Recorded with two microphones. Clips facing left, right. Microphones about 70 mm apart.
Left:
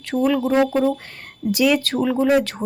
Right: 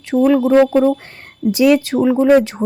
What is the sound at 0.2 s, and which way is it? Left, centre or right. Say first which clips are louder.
Speech: right 6 dB; right.